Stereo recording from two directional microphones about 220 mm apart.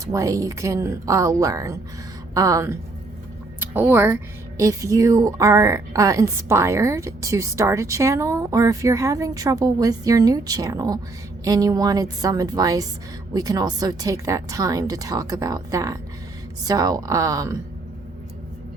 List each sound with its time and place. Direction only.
0.0 s speech: 15° right (ahead or behind)